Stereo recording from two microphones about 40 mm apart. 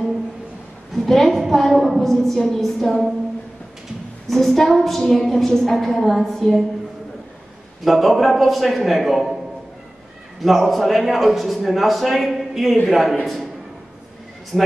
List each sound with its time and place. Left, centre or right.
0.9 s a woman's voice: centre
4.3 s a man's voice: centre
7.8 s a man's voice: centre
10.4 s a man's voice: centre
14.5 s a man's voice: centre